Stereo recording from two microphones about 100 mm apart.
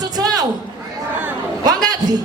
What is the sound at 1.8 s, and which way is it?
Speech, 40° right (ahead or behind).